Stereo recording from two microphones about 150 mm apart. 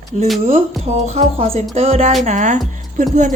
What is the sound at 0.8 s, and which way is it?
A woman's voice, 50° right (ahead or behind).